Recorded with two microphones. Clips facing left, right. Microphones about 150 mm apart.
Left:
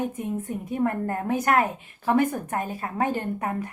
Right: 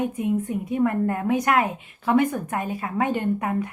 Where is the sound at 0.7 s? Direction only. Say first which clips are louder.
Right 3 dB; 40° left (ahead or behind).